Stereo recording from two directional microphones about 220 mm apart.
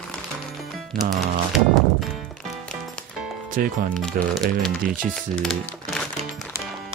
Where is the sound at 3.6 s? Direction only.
40° right (ahead or behind).